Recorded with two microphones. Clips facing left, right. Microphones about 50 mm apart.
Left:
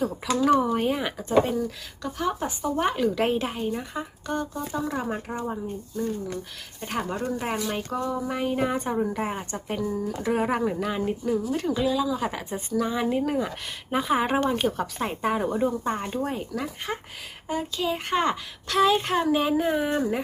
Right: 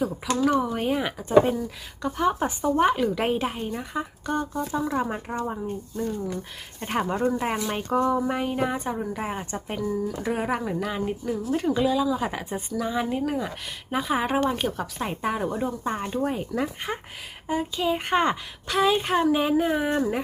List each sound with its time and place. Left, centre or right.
0.3 s a woman's voice: centre
3.9 s a woman's voice: centre
5.0 s a woman's voice: centre
7.2 s a woman's voice: centre
7.4 s a woman's voice: centre
7.9 s speech: right
8.2 s a woman's voice: centre
10.3 s speech: centre
11.5 s a woman's voice: centre
12.7 s a woman's voice: centre